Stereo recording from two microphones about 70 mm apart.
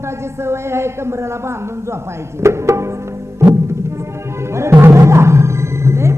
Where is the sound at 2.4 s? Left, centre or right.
Right.